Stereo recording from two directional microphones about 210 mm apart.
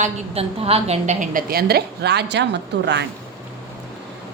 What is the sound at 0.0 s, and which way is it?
A woman's voice, 30° right (ahead or behind).